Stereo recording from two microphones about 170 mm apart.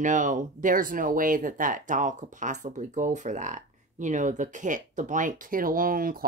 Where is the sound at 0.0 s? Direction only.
50° right (ahead or behind).